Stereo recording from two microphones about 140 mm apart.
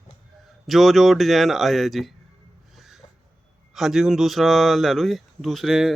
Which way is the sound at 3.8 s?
5° right (ahead or behind).